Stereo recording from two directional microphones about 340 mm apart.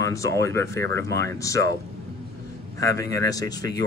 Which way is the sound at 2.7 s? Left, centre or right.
Centre.